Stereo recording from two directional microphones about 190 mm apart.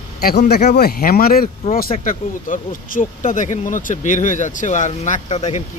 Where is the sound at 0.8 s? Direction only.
50° left (ahead or behind); by 5.4 s 30° left (ahead or behind).